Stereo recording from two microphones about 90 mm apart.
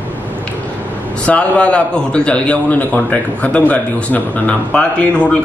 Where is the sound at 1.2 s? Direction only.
15° left (ahead or behind).